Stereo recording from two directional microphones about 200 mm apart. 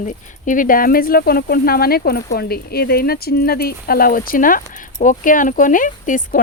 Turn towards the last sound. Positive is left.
turn(degrees=40)  # may be behind; listen again after turning